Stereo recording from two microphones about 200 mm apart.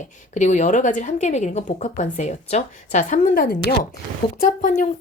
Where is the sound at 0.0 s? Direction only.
35° left (ahead or behind).